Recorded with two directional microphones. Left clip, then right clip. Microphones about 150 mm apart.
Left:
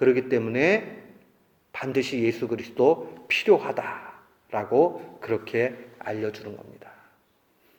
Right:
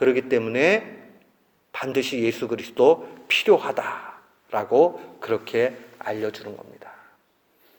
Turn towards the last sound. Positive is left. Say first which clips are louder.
# right 2 dB
turn(degrees=-20)  # may be behind; listen again after turning